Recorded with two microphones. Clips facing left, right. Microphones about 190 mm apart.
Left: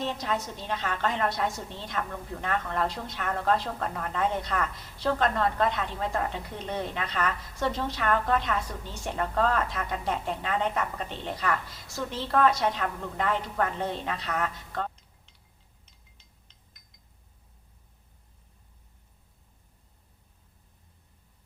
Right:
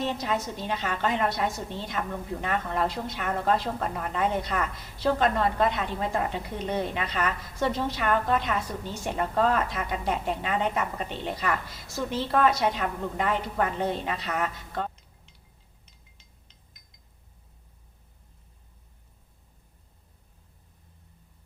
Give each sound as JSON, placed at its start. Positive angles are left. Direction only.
{"t": 0.0, "sound": "a woman's voice", "side_deg": -10}